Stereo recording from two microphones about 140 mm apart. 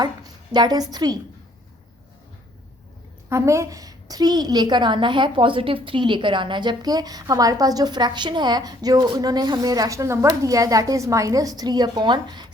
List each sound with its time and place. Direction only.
0.5 s a woman's voice: 30° right (ahead or behind)
3.2 s a woman's voice: 20° right (ahead or behind)